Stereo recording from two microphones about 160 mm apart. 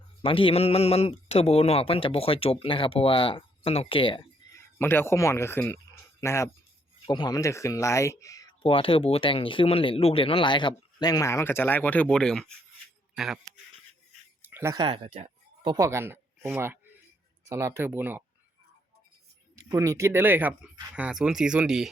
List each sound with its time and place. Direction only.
0.2 s speech: 35° left (ahead or behind)
4.4 s speech: 15° left (ahead or behind)
8.6 s speech: 35° left (ahead or behind); by 13.5 s centre (ahead or behind)
14.4 s a sound: 15° right (ahead or behind)
14.8 s speech: 35° right (ahead or behind)
15.6 s speech: 20° right (ahead or behind)
19.5 s speech: 20° right (ahead or behind); by 21.8 s 5° right (ahead or behind)